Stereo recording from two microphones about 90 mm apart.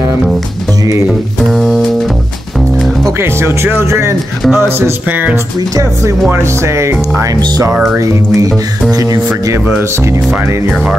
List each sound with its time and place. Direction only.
1.5 s music: 5° left (ahead or behind)
3.1 s speech: 30° right (ahead or behind)
6.3 s speech: 30° right (ahead or behind)